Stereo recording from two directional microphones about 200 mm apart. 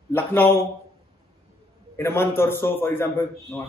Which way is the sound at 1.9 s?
10° left (ahead or behind).